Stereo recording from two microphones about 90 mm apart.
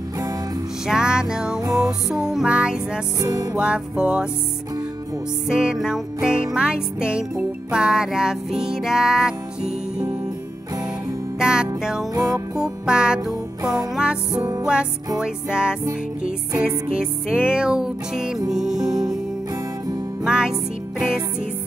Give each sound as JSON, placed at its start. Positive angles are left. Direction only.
{"t": 0.8, "sound": "music", "side_deg": -10}
{"t": 3.2, "sound": "music", "side_deg": -45}
{"t": 3.5, "sound": "music", "side_deg": -10}
{"t": 5.5, "sound": "music", "side_deg": -10}
{"t": 11.3, "sound": "music", "side_deg": -10}
{"t": 12.1, "sound": "music", "side_deg": -40}
{"t": 12.5, "sound": "music", "side_deg": -10}
{"t": 13.6, "sound": "music", "side_deg": -40}
{"t": 13.9, "sound": "music", "side_deg": -10}
{"t": 20.2, "sound": "music", "side_deg": -10}